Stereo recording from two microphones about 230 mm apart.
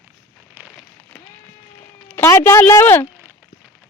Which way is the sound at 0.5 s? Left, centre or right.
Centre.